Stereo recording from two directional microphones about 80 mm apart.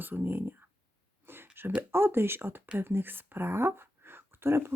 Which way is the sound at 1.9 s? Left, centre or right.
Right.